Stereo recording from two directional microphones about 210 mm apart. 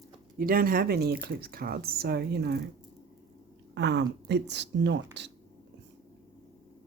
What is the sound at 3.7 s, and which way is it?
Speech, 55° right (ahead or behind).